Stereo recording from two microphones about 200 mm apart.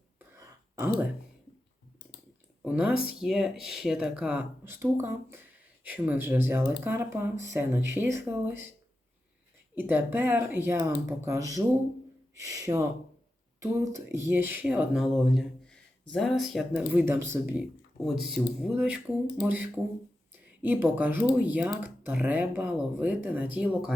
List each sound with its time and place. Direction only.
0.3 s a sound: 10° right (ahead or behind)
2.6 s speech: 5° right (ahead or behind)
2.9 s speech: 50° left (ahead or behind)
3.2 s speech: centre (ahead or behind)
9.7 s speech: 10° right (ahead or behind)